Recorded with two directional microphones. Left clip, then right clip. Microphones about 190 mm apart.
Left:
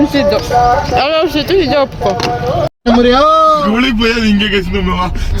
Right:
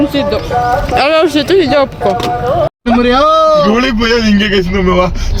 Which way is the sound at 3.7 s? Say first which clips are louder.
Right 2 dB; 40° right (ahead or behind).